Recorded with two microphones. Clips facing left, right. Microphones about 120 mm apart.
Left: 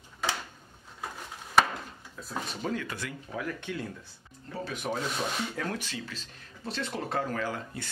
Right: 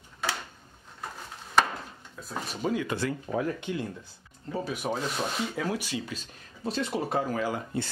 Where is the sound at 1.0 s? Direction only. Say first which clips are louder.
Even; 5° left (ahead or behind).